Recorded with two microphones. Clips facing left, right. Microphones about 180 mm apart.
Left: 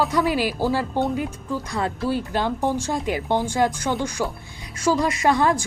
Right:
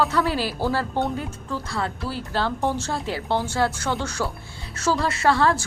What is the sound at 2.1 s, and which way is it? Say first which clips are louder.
A woman's voice: left 5 dB; 15° left (ahead or behind).